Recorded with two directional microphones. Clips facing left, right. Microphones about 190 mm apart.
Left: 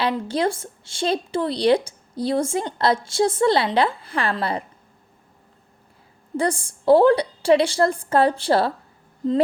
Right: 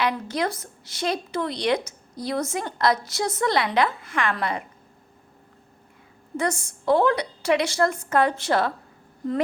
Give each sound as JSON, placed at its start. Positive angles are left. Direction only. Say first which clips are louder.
{"t": 0.0, "sound": "speech", "louder": "left 3 dB", "side_deg": 30}
{"t": 6.3, "sound": "a woman's voice", "louder": "left 3 dB", "side_deg": 30}